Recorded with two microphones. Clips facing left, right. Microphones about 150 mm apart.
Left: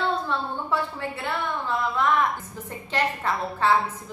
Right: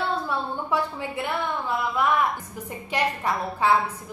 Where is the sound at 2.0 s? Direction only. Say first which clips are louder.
Even; 10° right (ahead or behind).